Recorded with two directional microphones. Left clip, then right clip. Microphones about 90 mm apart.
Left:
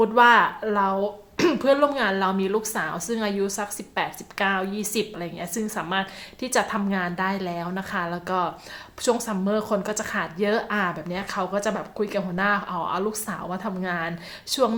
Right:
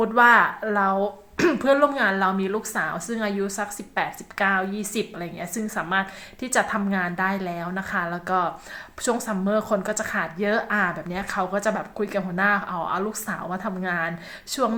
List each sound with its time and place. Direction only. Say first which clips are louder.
0.0 s a woman's voice: even; 25° left (ahead or behind)